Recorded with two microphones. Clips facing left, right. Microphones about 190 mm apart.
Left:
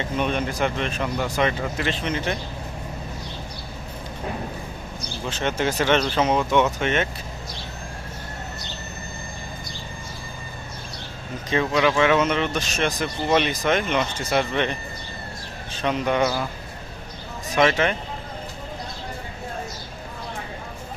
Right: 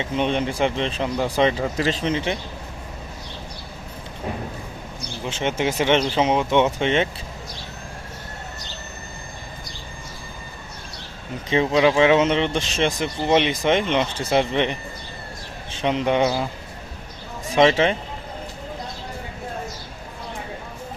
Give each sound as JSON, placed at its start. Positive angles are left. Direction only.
{"t": 0.0, "sound": "speech", "side_deg": -25}
{"t": 5.2, "sound": "speech", "side_deg": -20}
{"t": 11.4, "sound": "speech", "side_deg": -25}
{"t": 15.8, "sound": "speech", "side_deg": -20}
{"t": 17.5, "sound": "speech", "side_deg": -25}